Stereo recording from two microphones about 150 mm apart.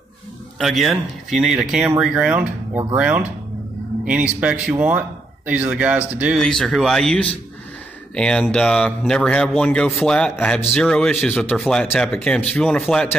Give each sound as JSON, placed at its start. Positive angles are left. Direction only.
{"t": 0.6, "sound": "a man's voice", "side_deg": 0}
{"t": 6.4, "sound": "a man's voice", "side_deg": 5}
{"t": 11.8, "sound": "a man's voice", "side_deg": 15}